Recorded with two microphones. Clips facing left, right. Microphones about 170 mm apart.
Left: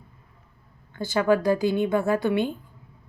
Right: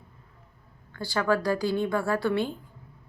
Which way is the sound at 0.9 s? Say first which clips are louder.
Left 4 dB; 20° left (ahead or behind).